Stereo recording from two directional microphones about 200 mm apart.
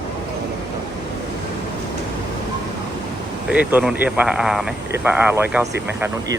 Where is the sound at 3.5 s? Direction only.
5° right (ahead or behind).